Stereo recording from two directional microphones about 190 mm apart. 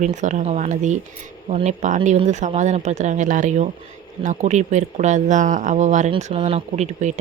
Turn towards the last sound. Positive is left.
turn(degrees=-35)  # may be behind; listen again after turning